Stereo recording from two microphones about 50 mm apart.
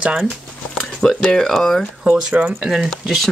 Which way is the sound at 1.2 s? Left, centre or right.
Centre.